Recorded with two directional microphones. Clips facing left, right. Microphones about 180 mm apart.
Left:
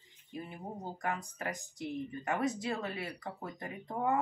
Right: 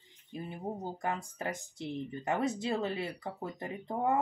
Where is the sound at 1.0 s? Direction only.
25° right (ahead or behind).